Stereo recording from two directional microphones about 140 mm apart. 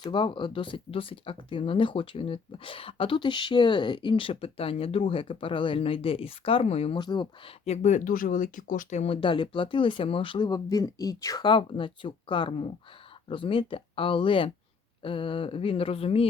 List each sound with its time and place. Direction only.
0.0 s speech: 35° left (ahead or behind)
7.0 s speech: 30° left (ahead or behind)
7.6 s speech: 55° left (ahead or behind); by 9.0 s 75° left (ahead or behind)
9.0 s speech: 40° left (ahead or behind)